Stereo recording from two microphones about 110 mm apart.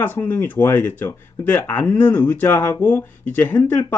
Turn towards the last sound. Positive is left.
turn(degrees=20)  # may be behind; listen again after turning